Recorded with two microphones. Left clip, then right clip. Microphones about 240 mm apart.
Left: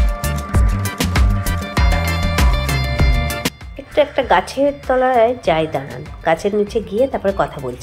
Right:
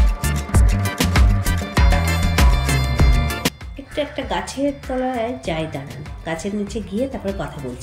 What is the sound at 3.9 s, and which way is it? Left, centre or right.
Music, centre.